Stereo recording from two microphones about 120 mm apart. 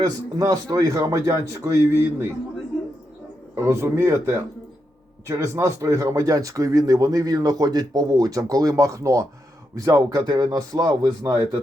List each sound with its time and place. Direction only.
0.0 s speech: 30° right (ahead or behind)
3.5 s speech: 25° right (ahead or behind)